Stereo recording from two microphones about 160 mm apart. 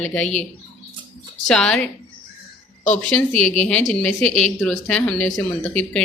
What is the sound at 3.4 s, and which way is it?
Speech, 45° left (ahead or behind).